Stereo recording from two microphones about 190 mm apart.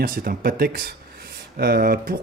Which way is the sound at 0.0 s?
50° right (ahead or behind).